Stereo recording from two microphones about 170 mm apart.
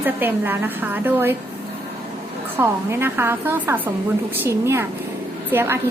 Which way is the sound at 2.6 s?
15° right (ahead or behind).